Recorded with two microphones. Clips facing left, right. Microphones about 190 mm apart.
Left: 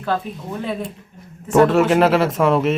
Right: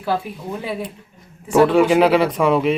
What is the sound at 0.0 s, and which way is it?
Speech, 5° right (ahead or behind).